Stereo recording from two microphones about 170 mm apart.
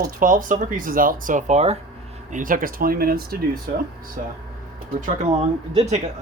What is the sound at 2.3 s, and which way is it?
Speech, 55° right (ahead or behind).